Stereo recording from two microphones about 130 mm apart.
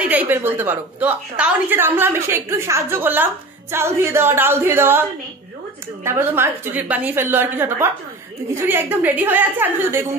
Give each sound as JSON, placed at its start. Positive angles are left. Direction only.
{"t": 0.0, "sound": "a woman's voice", "side_deg": -10}
{"t": 6.0, "sound": "a woman's voice", "side_deg": -20}